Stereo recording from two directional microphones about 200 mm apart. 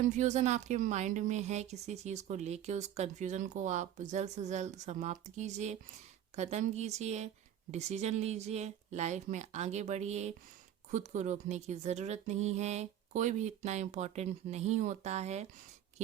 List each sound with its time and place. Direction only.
0.2 s a woman's voice: 35° right (ahead or behind)